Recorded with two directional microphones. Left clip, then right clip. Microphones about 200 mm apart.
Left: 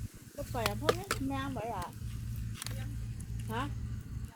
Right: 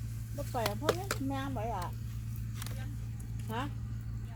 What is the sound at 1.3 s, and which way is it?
Speech, 10° left (ahead or behind).